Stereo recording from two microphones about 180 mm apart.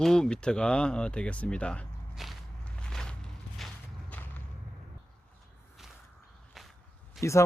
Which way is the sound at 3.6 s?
Centre (ahead or behind).